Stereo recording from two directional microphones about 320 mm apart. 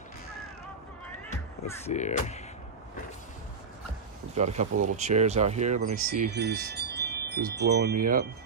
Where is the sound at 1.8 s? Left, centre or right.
Left.